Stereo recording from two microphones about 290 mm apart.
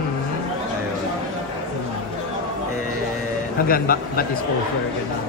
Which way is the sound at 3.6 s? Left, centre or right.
Left.